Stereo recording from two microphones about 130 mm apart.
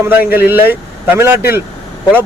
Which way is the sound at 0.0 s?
15° right (ahead or behind).